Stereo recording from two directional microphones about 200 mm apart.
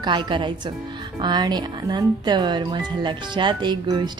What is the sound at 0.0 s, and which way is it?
Speech, 25° right (ahead or behind).